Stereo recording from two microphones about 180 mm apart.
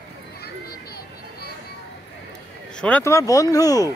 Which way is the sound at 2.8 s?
10° left (ahead or behind).